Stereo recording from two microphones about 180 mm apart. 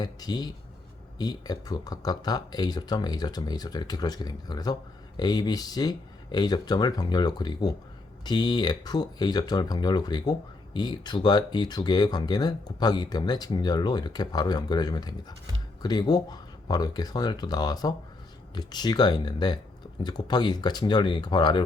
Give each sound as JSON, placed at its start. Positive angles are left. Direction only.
{"t": 0.0, "sound": "speech", "side_deg": 20}